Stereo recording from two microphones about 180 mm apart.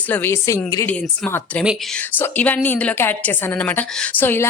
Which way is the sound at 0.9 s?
5° left (ahead or behind).